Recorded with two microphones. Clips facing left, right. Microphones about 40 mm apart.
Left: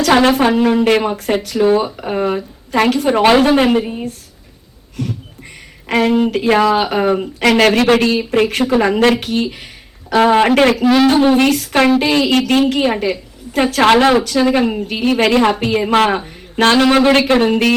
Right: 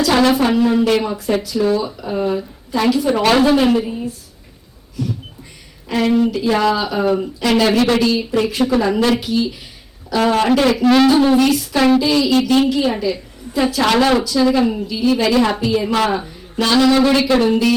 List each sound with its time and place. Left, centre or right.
0.1 s a woman's voice: left
0.9 s a woman's voice: left
3.1 s a woman's voice: left
5.0 s a sound: left
5.9 s a woman's voice: left
10.2 s a woman's voice: left
11.0 s a sound: left
11.3 s a woman's voice: left